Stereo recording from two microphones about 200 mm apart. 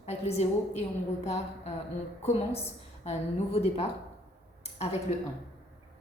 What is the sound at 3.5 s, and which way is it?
Speech, 30° left (ahead or behind).